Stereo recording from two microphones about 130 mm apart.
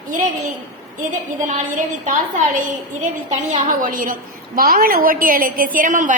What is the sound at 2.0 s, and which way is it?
A woman's voice, 65° right (ahead or behind).